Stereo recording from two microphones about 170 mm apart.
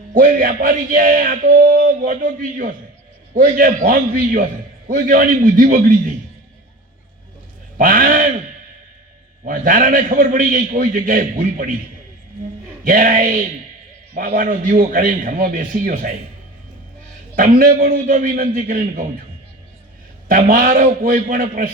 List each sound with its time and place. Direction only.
0.1 s a man's voice: 55° right (ahead or behind)
7.8 s a man's voice: 55° right (ahead or behind)
9.4 s a man's voice: 50° right (ahead or behind)
12.8 s a man's voice: 55° right (ahead or behind)
17.3 s a man's voice: 50° right (ahead or behind)
20.2 s a man's voice: 55° right (ahead or behind)